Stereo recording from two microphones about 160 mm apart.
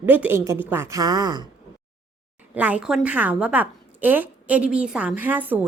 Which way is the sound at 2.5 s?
10° right (ahead or behind).